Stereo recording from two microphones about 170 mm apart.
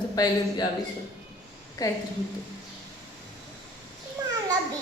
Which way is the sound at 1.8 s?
20° left (ahead or behind).